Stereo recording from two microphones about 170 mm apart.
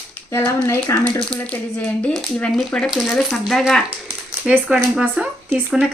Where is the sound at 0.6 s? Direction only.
15° left (ahead or behind).